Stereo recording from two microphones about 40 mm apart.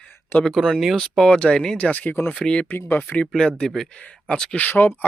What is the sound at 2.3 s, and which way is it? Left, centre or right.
Speech, left.